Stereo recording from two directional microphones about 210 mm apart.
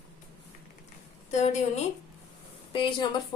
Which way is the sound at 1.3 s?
35° left (ahead or behind).